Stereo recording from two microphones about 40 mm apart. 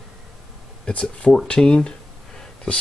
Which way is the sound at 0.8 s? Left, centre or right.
Left.